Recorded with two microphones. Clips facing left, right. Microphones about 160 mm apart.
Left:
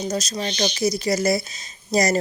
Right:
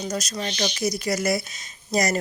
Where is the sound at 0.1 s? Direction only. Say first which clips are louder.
Left 3 dB; 25° left (ahead or behind).